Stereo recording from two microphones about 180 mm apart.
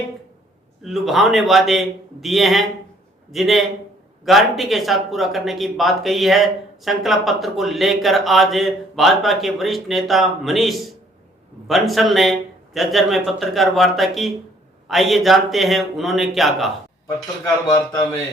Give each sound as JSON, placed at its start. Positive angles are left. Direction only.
{"t": 0.8, "sound": "speech", "side_deg": 0}